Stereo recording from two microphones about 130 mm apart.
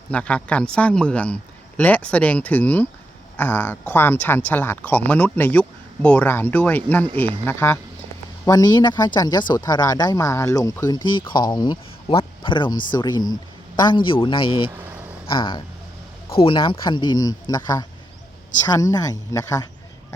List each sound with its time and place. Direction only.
0.1 s speech: 10° left (ahead or behind)
8.4 s speech: 30° left (ahead or behind)